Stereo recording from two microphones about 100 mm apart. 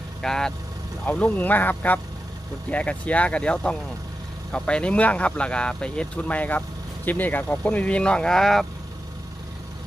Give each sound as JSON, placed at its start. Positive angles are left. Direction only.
{"t": 0.2, "sound": "speech", "side_deg": 5}